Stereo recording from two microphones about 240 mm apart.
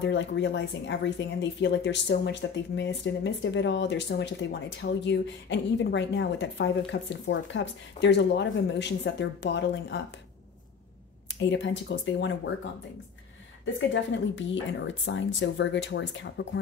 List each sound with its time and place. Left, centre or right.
0.0 s speech: left
11.2 s speech: left
13.7 s speech: left